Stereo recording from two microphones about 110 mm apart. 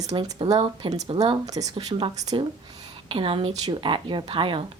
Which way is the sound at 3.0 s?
55° right (ahead or behind).